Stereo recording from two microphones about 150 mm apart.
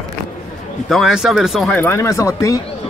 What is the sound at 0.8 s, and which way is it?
Speech, centre (ahead or behind).